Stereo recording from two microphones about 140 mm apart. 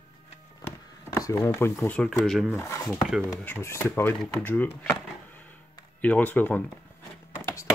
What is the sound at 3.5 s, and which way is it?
Speech, 20° left (ahead or behind).